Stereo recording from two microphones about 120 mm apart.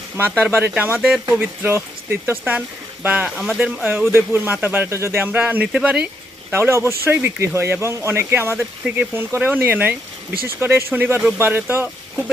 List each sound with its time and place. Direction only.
0.3 s speech: 15° right (ahead or behind)
1.4 s speech: 20° right (ahead or behind)
3.4 s speech: centre (ahead or behind)
4.1 s speech: 20° right (ahead or behind)
6.5 s speech: 20° right (ahead or behind)
8.5 s speech: 5° right (ahead or behind)
9.1 s speech: 15° right (ahead or behind)